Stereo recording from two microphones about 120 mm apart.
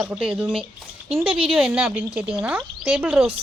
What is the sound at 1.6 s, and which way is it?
Speech, 10° right (ahead or behind).